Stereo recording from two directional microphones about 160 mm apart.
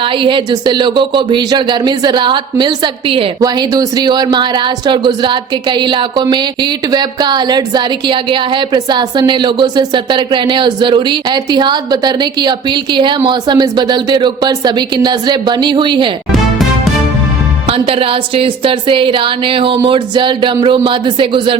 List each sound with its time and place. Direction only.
0.0 s speech: 30° right (ahead or behind)
17.7 s a woman's voice: 35° right (ahead or behind)